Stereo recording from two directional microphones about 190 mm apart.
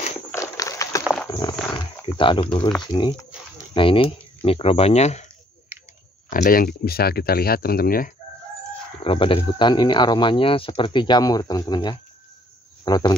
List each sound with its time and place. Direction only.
0.3 s a sound: 15° left (ahead or behind)
2.1 s speech: 25° left (ahead or behind)
6.3 s speech: 50° left (ahead or behind)
9.0 s speech: 30° left (ahead or behind)